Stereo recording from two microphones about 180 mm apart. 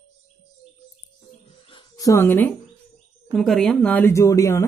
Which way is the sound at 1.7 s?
25° left (ahead or behind).